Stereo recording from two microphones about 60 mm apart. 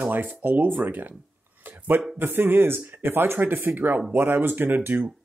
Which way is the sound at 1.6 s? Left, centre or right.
Right.